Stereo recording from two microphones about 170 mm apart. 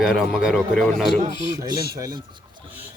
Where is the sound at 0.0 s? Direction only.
5° right (ahead or behind).